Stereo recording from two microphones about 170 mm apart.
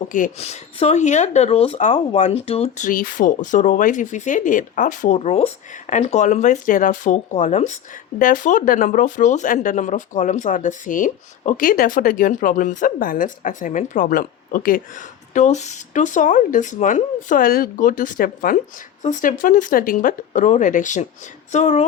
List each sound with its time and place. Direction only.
0.1 s speech: 45° left (ahead or behind)
15.3 s speech: 45° left (ahead or behind)